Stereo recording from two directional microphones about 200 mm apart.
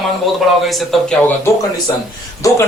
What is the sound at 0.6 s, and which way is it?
Speech, centre (ahead or behind).